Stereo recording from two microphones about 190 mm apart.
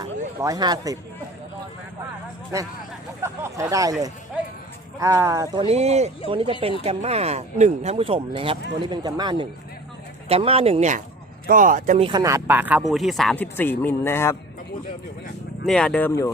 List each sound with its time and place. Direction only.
0.0 s a sound: 20° right (ahead or behind)
3.2 s a sound: 15° right (ahead or behind)
4.9 s speech: 15° right (ahead or behind)
5.6 s speech: 35° right (ahead or behind)
11.9 s speech: 25° right (ahead or behind); by 14.3 s 15° left (ahead or behind)
15.6 s speech: 5° left (ahead or behind)